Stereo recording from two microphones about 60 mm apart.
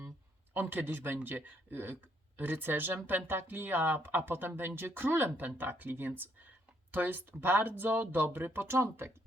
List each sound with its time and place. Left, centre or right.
0.5 s speech: right